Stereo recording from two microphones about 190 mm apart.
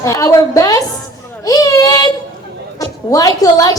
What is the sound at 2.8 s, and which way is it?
Speech, 20° left (ahead or behind).